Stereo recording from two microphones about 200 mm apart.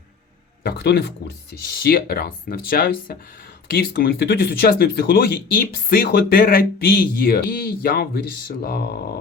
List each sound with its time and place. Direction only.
0.6 s speech: 50° left (ahead or behind)